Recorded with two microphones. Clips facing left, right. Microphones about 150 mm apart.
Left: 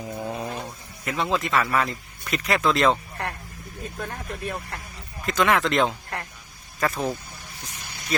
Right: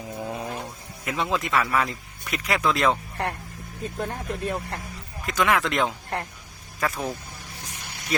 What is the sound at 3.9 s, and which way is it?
Speech, 25° right (ahead or behind).